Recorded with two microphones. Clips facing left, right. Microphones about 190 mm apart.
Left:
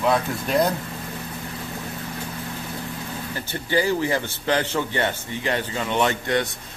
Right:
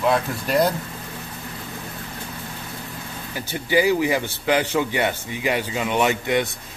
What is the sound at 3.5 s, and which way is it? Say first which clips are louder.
A man's voice: right 3 dB; 10° right (ahead or behind).